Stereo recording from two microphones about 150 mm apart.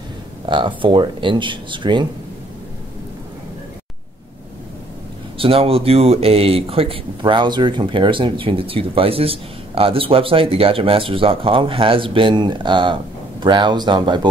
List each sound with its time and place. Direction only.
0.5 s speech: 35° right (ahead or behind)
5.4 s speech: 40° right (ahead or behind)